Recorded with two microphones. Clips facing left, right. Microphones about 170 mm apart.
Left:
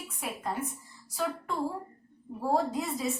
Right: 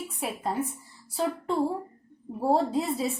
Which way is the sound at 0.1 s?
35° right (ahead or behind).